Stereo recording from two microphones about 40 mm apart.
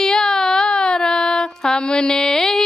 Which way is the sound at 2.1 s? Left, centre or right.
Centre.